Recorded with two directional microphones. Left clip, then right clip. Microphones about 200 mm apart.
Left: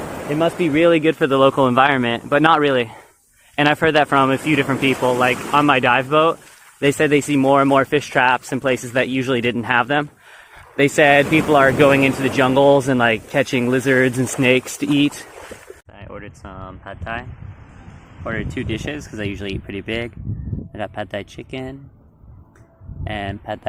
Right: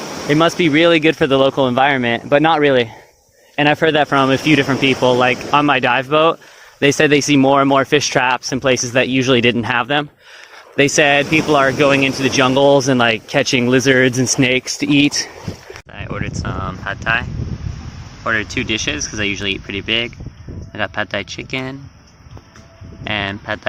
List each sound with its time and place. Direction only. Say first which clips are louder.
0.3 s speech: right 5 dB; 50° right (ahead or behind); by 17.2 s 10° right (ahead or behind)
18.3 s speech: right 8 dB; 5° right (ahead or behind)
23.0 s speech: right 6 dB; centre (ahead or behind)